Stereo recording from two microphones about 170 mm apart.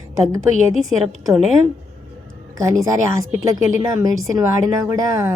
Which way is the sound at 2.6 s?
20° right (ahead or behind).